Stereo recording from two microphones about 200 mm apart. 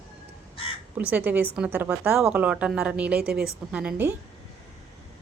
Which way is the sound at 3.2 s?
50° right (ahead or behind).